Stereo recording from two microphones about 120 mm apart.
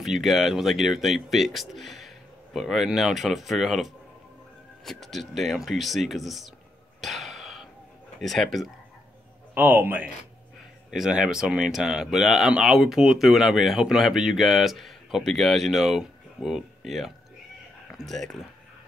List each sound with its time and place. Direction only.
0.0 s speech: centre (ahead or behind)
7.0 s throat clearing: centre (ahead or behind)
8.2 s speech: centre (ahead or behind)
9.5 s a man's voice: 15° right (ahead or behind); by 18.4 s 5° left (ahead or behind)